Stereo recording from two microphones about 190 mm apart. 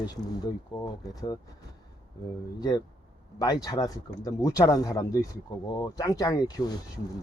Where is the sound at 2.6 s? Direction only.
20° left (ahead or behind).